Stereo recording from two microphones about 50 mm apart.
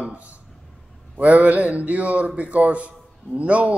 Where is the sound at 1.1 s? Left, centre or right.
Right.